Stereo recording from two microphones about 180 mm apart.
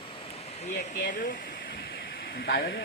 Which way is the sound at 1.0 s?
50° left (ahead or behind).